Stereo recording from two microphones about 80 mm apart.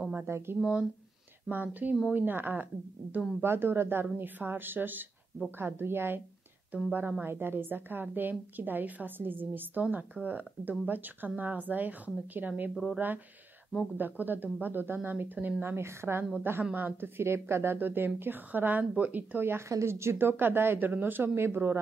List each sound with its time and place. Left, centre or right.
0.1 s a woman's voice: right